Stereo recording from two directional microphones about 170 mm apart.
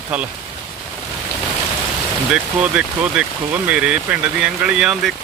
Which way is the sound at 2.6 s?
5° right (ahead or behind).